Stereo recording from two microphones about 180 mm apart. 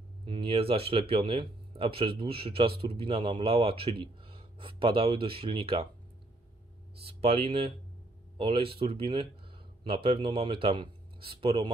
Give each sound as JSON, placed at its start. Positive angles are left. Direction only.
{"t": 0.2, "sound": "speech", "side_deg": -30}
{"t": 7.1, "sound": "speech", "side_deg": -30}